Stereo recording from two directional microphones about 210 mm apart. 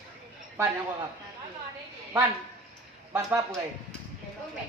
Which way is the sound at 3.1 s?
15° right (ahead or behind).